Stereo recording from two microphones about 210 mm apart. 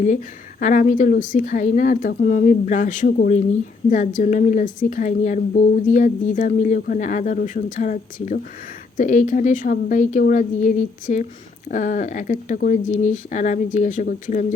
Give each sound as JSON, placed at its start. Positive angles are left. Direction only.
{"t": 0.0, "sound": "speech", "side_deg": 35}